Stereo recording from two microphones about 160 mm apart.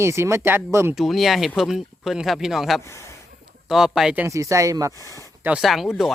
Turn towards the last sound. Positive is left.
turn(degrees=0)  # may be behind; listen again after turning